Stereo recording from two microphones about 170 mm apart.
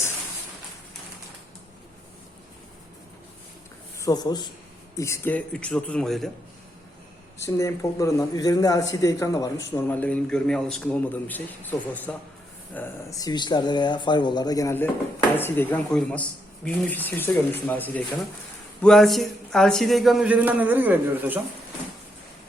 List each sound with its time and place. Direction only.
3.9 s a man's voice: 20° left (ahead or behind); by 6.3 s centre (ahead or behind)
7.3 s a man's voice: 15° left (ahead or behind); by 21.4 s 10° right (ahead or behind)